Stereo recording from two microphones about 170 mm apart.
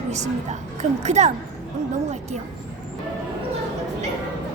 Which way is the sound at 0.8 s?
40° right (ahead or behind).